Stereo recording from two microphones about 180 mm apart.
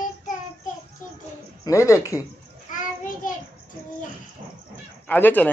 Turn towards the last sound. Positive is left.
turn(degrees=10)  # may be behind; listen again after turning